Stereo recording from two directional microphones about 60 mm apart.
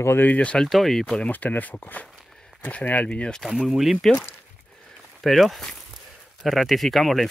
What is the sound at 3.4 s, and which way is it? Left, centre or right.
Speech, centre.